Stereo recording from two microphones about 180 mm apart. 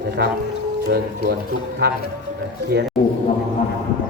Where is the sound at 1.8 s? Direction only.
75° right (ahead or behind).